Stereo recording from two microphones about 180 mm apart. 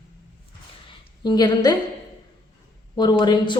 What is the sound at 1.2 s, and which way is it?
Speech, 25° left (ahead or behind).